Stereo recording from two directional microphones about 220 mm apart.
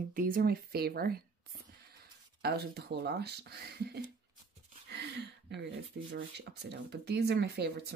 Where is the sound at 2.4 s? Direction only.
45° right (ahead or behind).